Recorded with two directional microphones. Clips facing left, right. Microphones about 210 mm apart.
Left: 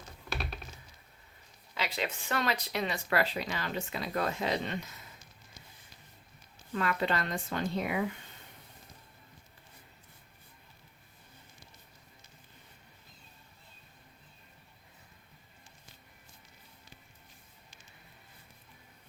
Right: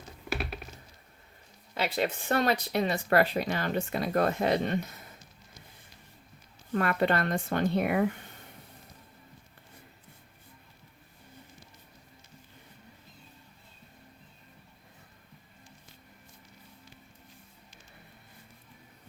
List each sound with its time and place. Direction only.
1.7 s speech: 50° right (ahead or behind)
6.7 s speech: 55° right (ahead or behind)